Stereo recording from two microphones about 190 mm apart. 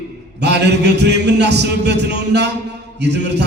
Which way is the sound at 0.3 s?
65° right (ahead or behind).